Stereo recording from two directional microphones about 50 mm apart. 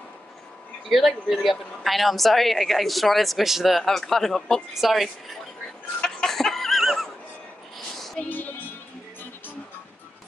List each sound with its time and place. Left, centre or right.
0.8 s a woman's voice: centre
4.7 s a woman's voice: centre
5.9 s a sound: centre
8.3 s music: left